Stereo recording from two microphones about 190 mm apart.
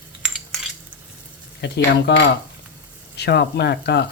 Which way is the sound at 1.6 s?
65° left (ahead or behind).